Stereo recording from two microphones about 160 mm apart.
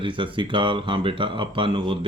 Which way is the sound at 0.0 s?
30° right (ahead or behind).